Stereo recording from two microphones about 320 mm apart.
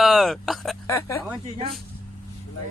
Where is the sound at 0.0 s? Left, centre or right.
Centre.